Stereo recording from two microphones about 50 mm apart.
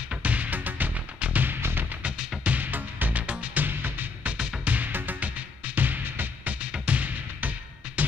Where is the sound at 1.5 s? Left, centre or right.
Right.